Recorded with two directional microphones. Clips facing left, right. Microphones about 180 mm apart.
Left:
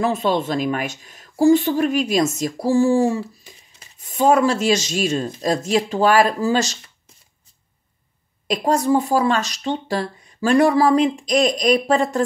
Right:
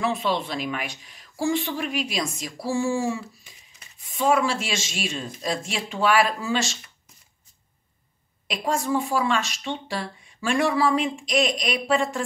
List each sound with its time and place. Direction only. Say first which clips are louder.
0.0 s speech: left 5 dB; 40° left (ahead or behind)
8.5 s speech: left 7 dB; 40° left (ahead or behind)